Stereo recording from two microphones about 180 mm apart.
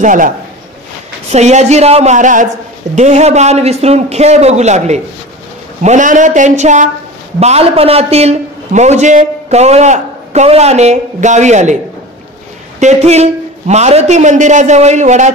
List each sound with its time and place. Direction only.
0.0 s speech: 45° right (ahead or behind)
1.3 s a man's voice: 40° right (ahead or behind)
12.8 s a man's voice: 35° right (ahead or behind)